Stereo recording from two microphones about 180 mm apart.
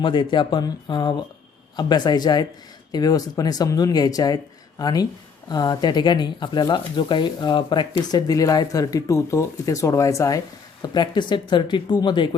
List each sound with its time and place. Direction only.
0.0 s speech: 25° left (ahead or behind)